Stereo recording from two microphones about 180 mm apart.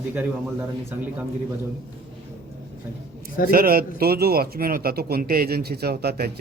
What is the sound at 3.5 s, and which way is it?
A man's voice, 55° right (ahead or behind).